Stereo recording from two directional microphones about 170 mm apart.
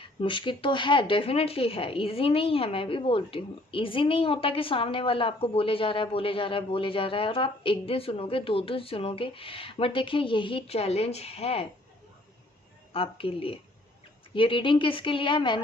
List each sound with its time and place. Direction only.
0.0 s speech: 30° left (ahead or behind)
12.9 s speech: 35° left (ahead or behind)